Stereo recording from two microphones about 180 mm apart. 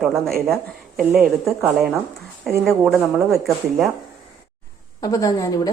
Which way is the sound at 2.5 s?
Centre (ahead or behind).